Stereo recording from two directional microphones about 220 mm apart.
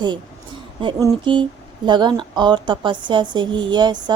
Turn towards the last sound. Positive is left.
turn(degrees=-20)  # may be behind; listen again after turning